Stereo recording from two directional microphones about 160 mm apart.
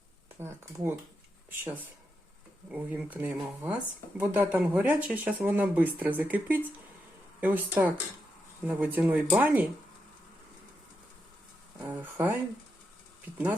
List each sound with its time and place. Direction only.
0.3 s speech: 15° right (ahead or behind)
2.7 s speech: 10° right (ahead or behind)
11.8 s speech: 15° right (ahead or behind)